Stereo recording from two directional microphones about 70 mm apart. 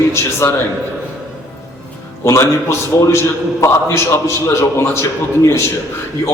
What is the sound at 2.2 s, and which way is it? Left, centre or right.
A man's voice, left.